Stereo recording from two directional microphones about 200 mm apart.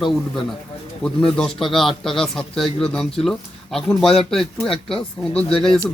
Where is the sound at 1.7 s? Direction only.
Centre (ahead or behind).